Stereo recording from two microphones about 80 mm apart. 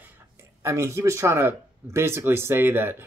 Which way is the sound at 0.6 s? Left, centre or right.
Right.